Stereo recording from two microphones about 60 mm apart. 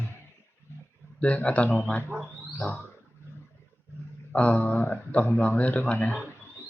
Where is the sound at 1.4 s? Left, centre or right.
Left.